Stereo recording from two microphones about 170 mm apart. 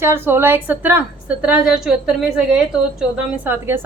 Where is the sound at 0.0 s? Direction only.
15° right (ahead or behind).